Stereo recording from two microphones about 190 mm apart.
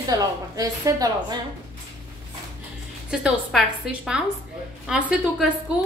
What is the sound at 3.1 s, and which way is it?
A woman's voice, 5° right (ahead or behind).